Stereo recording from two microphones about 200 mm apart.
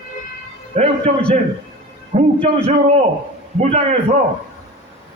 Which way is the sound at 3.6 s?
30° right (ahead or behind).